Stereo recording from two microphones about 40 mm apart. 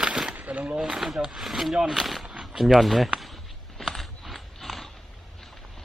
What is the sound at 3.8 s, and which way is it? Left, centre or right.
Mechanisms, centre.